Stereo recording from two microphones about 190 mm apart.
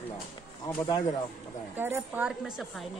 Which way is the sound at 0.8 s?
20° left (ahead or behind).